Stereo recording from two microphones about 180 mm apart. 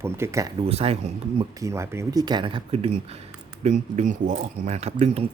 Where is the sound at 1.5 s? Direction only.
15° right (ahead or behind); by 5.2 s 35° right (ahead or behind).